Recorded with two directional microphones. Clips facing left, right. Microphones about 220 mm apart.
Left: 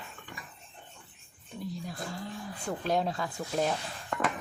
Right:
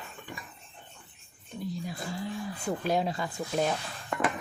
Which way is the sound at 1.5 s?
Centre (ahead or behind).